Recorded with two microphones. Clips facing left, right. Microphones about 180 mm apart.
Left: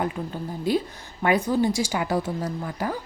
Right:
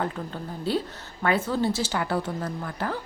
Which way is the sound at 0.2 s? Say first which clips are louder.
Left 3 dB; 5° left (ahead or behind).